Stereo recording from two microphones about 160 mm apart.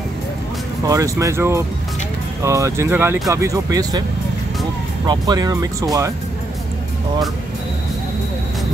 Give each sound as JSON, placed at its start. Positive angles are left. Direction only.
{"t": 0.8, "sound": "speech", "side_deg": -20}
{"t": 5.0, "sound": "speech", "side_deg": -25}